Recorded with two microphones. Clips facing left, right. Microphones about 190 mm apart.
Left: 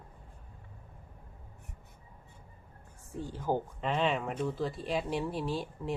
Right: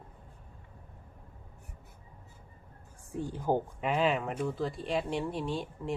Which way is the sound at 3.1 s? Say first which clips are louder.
Right 2 dB; 15° right (ahead or behind).